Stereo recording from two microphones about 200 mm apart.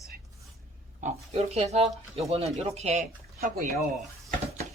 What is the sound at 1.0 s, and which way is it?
Speech, 35° right (ahead or behind).